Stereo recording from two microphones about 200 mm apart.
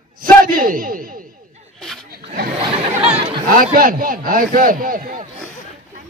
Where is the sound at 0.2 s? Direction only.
45° right (ahead or behind).